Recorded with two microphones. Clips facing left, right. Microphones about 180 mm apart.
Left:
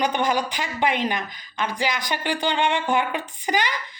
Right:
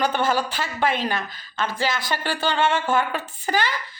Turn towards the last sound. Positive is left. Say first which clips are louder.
# even
turn(degrees=15)  # may be behind; listen again after turning